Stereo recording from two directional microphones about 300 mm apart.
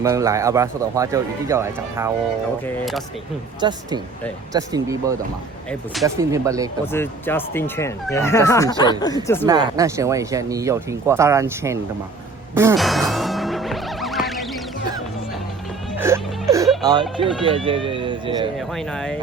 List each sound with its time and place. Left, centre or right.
0.0 s speech: centre
2.6 s speech: centre
3.6 s speech: centre
5.9 s speech: centre
6.3 s speech: centre
6.9 s speech: centre
9.5 s speech: centre
12.5 s music: centre
16.0 s music: centre
16.8 s speech: centre
18.5 s speech: centre